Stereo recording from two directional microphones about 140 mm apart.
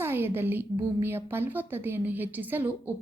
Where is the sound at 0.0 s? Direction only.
15° right (ahead or behind).